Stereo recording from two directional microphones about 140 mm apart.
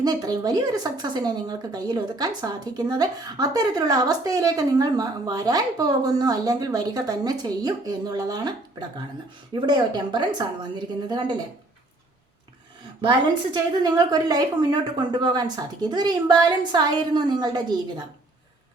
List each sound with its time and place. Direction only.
0.0 s a woman's voice: 30° right (ahead or behind)
9.6 s a woman's voice: 30° right (ahead or behind)
13.0 s a woman's voice: 35° right (ahead or behind)